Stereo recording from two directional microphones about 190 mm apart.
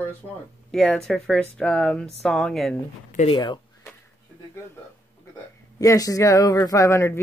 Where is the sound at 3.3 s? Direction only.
25° left (ahead or behind).